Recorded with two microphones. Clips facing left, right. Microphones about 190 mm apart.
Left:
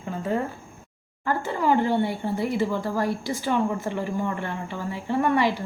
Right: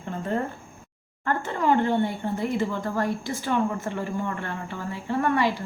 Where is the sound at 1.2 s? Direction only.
10° left (ahead or behind).